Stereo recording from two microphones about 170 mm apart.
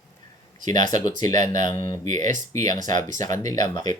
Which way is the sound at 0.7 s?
20° left (ahead or behind).